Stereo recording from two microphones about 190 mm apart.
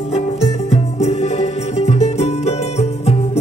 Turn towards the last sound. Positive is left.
turn(degrees=35)  # may be behind; listen again after turning